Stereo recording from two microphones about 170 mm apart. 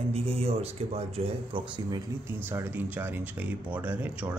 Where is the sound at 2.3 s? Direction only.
15° right (ahead or behind).